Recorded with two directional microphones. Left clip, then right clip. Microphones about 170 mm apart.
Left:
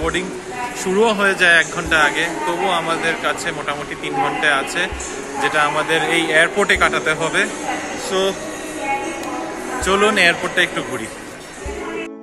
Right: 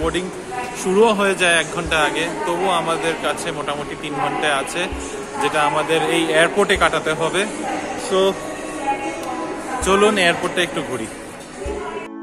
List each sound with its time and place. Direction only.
0.9 s speech: 10° right (ahead or behind)
8.1 s speech: 20° right (ahead or behind)
9.8 s speech: 15° right (ahead or behind)